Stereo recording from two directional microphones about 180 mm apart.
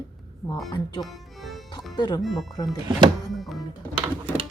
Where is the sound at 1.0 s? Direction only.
Centre (ahead or behind).